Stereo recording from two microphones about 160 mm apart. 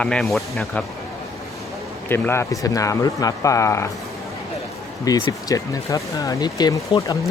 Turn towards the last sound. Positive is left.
turn(degrees=25)  # may be behind; listen again after turning